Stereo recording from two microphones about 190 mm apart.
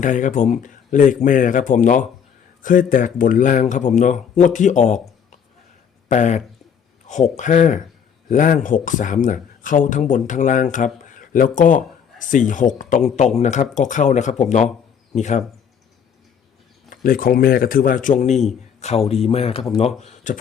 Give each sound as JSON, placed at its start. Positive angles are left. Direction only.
{"t": 0.0, "sound": "a man's voice", "side_deg": 40}
{"t": 16.9, "sound": "a man's voice", "side_deg": 45}